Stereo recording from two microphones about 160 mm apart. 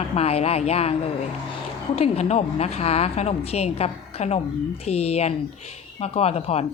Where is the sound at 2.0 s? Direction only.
40° left (ahead or behind).